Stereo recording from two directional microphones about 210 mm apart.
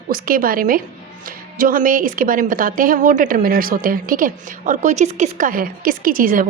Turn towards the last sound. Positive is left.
turn(degrees=-40)  # may be behind; listen again after turning